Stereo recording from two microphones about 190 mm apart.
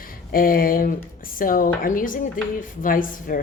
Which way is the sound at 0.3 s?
50° left (ahead or behind).